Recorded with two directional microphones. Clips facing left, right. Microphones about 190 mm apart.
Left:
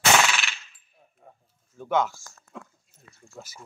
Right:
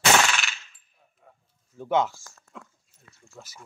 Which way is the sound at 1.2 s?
30° left (ahead or behind).